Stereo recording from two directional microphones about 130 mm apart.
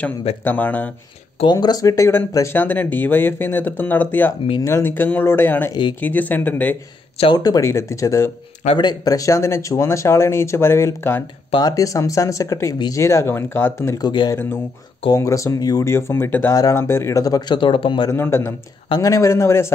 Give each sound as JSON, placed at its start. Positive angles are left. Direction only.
{"t": 0.4, "sound": "speech", "side_deg": 15}
{"t": 1.4, "sound": "speech", "side_deg": 35}
{"t": 7.3, "sound": "speech", "side_deg": 30}
{"t": 13.0, "sound": "speech", "side_deg": 20}
{"t": 18.1, "sound": "speech", "side_deg": 20}